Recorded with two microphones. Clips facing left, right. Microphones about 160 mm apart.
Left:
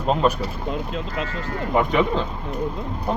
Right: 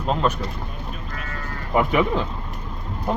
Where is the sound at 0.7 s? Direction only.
90° left.